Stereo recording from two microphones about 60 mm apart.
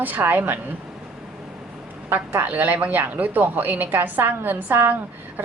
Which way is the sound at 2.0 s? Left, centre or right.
Right.